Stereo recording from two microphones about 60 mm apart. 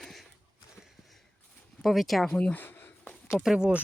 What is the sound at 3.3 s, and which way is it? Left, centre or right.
Speech, centre.